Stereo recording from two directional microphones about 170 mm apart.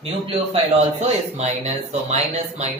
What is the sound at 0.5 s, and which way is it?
Speech, 40° right (ahead or behind).